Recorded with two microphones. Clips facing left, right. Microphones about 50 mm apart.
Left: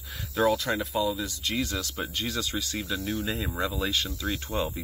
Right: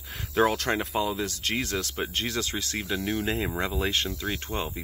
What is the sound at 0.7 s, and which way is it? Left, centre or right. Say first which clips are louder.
Speech: even; right.